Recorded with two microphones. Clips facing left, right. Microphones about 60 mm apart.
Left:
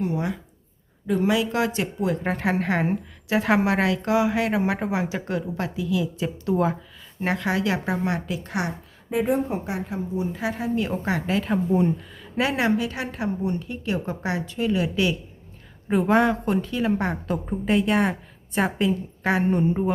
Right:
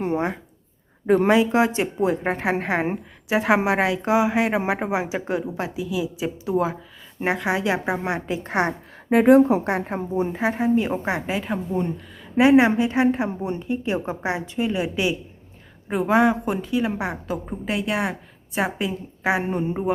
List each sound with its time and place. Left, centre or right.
0.0 s speech: right
1.0 s a woman's voice: right
1.3 s a woman's voice: right; by 6.7 s centre
7.2 s a woman's voice: centre; by 8.7 s right
9.0 s speech: right
9.7 s a woman's voice: right
10.3 s a woman's voice: right
11.3 s a woman's voice: centre
12.4 s a woman's voice: right
15.9 s a woman's voice: centre